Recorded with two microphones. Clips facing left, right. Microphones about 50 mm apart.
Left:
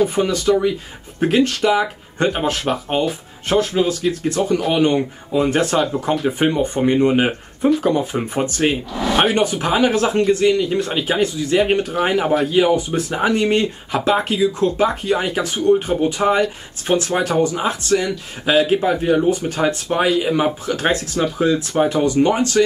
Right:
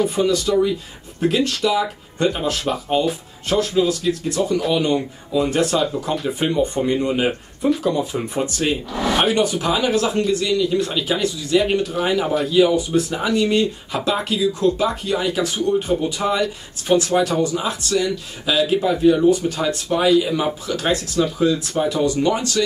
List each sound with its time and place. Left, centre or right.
0.1 s speech: left
9.1 s speech: centre
9.4 s speech: left